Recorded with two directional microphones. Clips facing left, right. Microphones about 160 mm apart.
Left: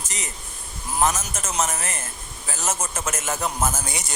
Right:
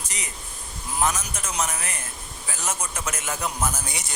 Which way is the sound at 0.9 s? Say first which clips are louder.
Left 3 dB; 45° left (ahead or behind).